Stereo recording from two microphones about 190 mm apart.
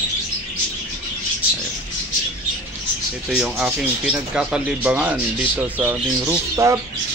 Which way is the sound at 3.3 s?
5° right (ahead or behind).